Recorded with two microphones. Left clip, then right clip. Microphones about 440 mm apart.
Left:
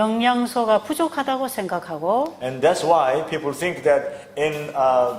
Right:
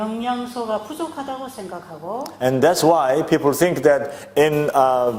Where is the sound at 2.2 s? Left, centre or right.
Right.